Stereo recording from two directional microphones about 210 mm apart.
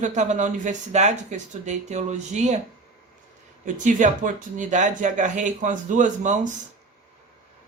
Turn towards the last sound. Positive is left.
turn(degrees=-35)  # may be behind; listen again after turning